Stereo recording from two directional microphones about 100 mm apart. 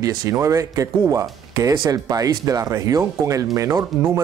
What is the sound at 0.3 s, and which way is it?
Speech, 30° right (ahead or behind).